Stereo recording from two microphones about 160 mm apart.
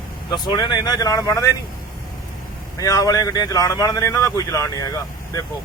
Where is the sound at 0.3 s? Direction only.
25° left (ahead or behind).